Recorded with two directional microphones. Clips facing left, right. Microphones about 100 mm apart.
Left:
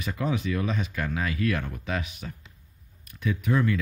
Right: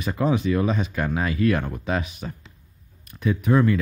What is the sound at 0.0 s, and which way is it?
Speech, 35° right (ahead or behind).